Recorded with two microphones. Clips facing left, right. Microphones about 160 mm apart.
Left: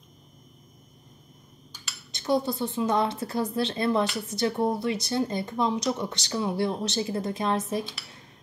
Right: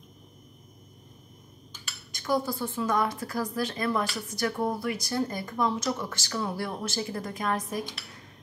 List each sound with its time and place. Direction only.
2.1 s speech: 25° left (ahead or behind)